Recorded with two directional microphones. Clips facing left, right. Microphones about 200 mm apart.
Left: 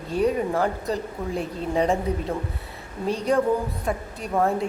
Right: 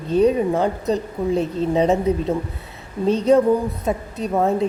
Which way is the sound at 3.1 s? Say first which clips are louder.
Right 6 dB; 20° right (ahead or behind).